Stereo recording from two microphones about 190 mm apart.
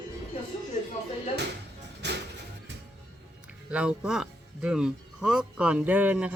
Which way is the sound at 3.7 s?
5° right (ahead or behind).